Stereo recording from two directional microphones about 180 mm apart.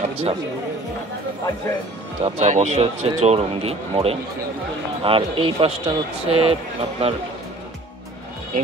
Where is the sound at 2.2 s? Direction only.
40° right (ahead or behind).